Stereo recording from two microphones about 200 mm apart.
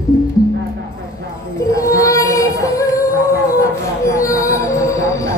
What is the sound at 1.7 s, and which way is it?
Music, 15° left (ahead or behind).